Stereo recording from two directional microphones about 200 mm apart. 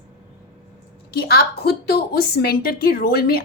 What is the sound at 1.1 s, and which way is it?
A woman's voice, 50° left (ahead or behind).